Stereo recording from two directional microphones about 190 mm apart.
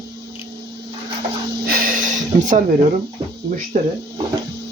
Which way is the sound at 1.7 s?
50° right (ahead or behind).